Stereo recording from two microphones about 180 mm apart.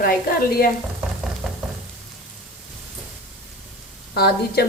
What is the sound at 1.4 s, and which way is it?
Frying, centre (ahead or behind).